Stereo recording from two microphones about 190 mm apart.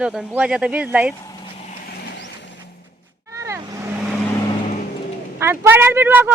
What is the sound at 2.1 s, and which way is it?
Vehicle, 70° left (ahead or behind).